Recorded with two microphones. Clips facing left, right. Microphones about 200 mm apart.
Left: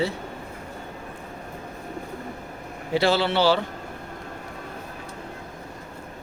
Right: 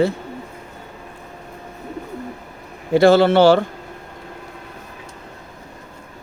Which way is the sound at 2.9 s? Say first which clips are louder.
Right 10 dB; 50° right (ahead or behind).